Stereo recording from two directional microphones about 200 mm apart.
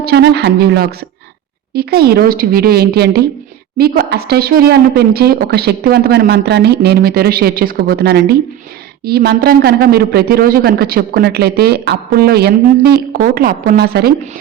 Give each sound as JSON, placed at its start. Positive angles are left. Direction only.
{"t": 0.0, "sound": "a man's voice", "side_deg": -55}